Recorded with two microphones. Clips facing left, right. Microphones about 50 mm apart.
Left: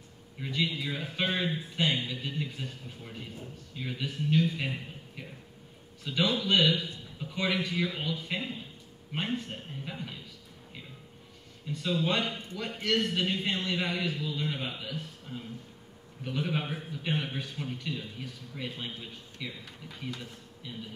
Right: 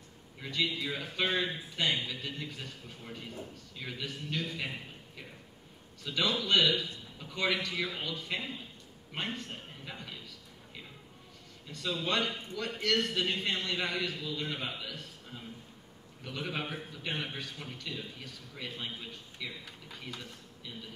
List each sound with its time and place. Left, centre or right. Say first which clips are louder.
0.4 s a man's voice: left 2 dB; centre
0.8 s a man's voice: left 1 dB; centre
11.7 s a man's voice: left 3 dB; centre
16.4 s a man's voice: left 2 dB; centre
16.7 s a man's voice: left 4 dB; centre
17.4 s a man's voice: left 5 dB; centre